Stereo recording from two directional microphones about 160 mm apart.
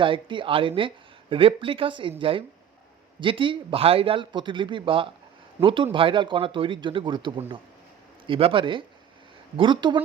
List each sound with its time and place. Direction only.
0.0 s a woman's voice: 30° right (ahead or behind)